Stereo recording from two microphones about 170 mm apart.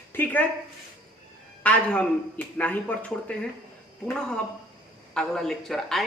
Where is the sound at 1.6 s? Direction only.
10° left (ahead or behind).